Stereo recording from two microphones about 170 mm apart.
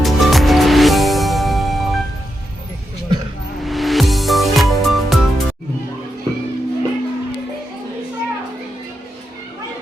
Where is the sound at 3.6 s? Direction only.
Centre (ahead or behind).